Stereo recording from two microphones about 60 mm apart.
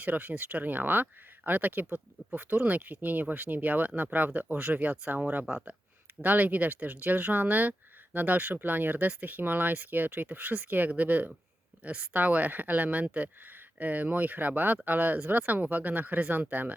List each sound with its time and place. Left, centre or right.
0.0 s speech: right